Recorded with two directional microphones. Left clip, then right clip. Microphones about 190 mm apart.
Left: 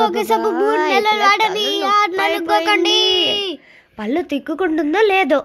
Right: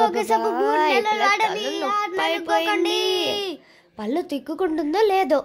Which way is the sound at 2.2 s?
10° left (ahead or behind).